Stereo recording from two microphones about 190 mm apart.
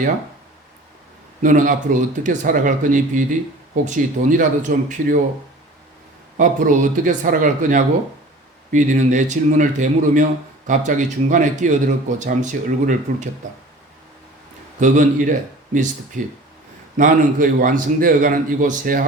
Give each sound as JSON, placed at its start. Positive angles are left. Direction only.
{"t": 1.4, "sound": "a man's voice", "side_deg": -45}
{"t": 6.3, "sound": "a man's voice", "side_deg": -45}
{"t": 14.8, "sound": "a man's voice", "side_deg": -40}